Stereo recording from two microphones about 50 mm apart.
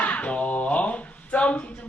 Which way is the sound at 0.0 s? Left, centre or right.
Left.